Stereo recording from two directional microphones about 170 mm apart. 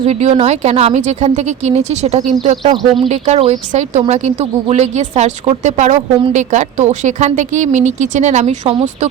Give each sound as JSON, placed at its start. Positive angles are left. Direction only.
{"t": 0.0, "sound": "speech", "side_deg": -40}